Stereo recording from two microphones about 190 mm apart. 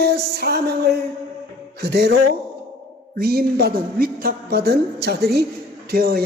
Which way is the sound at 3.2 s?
55° right (ahead or behind).